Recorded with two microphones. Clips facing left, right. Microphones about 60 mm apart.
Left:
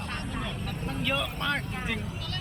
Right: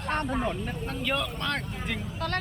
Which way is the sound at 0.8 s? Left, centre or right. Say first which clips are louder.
Left 1 dB; centre.